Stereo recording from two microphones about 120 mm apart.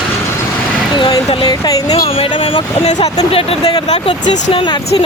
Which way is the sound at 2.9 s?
60° left (ahead or behind).